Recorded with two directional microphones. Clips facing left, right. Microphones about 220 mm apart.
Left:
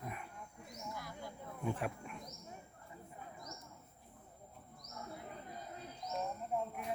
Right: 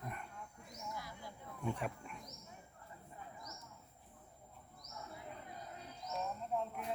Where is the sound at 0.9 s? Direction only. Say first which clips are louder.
Left 2 dB; 50° left (ahead or behind).